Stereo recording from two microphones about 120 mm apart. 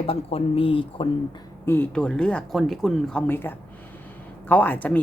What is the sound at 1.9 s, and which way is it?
Speech, 5° left (ahead or behind).